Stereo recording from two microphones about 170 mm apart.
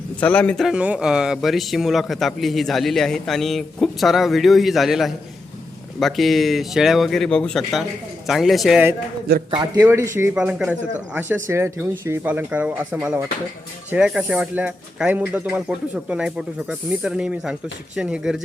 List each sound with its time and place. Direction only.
0.2 s speech: 10° left (ahead or behind)
9.5 s a man's voice: 25° right (ahead or behind)
9.8 s speech: 15° right (ahead or behind)
10.3 s speech: 5° right (ahead or behind)